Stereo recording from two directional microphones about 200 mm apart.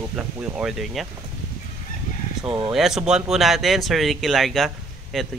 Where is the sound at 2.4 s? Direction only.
20° right (ahead or behind).